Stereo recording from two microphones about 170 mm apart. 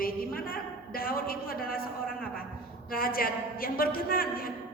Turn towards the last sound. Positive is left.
turn(degrees=60)  # may be behind; listen again after turning